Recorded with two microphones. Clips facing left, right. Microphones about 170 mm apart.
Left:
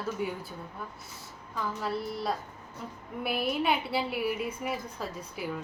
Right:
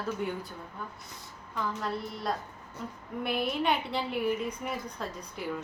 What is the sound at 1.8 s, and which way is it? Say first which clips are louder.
A woman's voice: left 2 dB; 5° left (ahead or behind).